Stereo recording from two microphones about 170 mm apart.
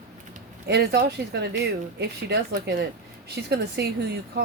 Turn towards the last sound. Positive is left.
turn(degrees=-75)  # may be behind; listen again after turning